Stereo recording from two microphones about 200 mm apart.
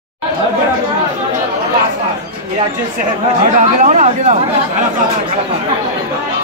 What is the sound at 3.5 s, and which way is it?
Speech, 35° right (ahead or behind).